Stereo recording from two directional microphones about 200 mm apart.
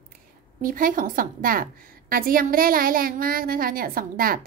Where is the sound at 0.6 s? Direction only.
45° right (ahead or behind).